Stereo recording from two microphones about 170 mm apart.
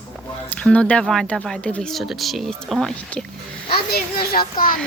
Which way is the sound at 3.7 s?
65° left (ahead or behind).